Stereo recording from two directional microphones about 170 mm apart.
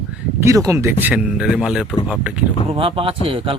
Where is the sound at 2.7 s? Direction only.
30° right (ahead or behind).